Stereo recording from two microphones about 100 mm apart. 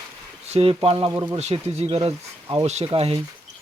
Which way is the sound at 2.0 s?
80° right.